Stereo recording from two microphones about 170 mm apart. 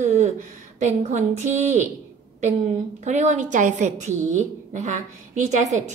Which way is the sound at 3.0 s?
45° right (ahead or behind).